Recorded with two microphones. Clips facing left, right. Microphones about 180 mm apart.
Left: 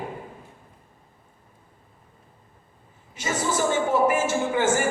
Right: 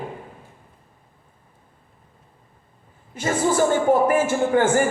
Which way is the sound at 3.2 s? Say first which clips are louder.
Right 6 dB; 55° right (ahead or behind).